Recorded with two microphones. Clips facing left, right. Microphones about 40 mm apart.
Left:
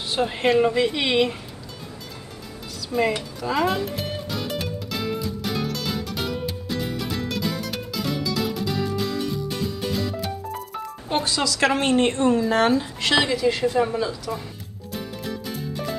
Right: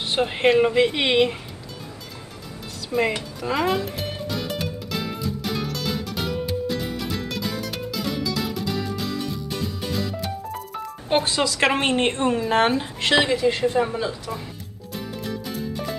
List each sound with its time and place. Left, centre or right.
0.2 s speech: right
2.9 s speech: centre
3.3 s music: centre
11.2 s speech: right; by 14.1 s centre
14.9 s music: centre